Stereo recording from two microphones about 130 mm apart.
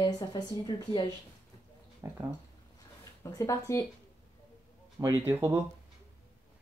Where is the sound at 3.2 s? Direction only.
25° left (ahead or behind).